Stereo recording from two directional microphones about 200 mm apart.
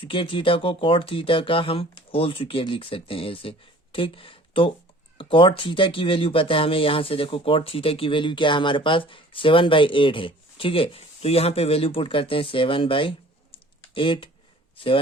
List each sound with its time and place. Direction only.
0.0 s speech: 25° left (ahead or behind)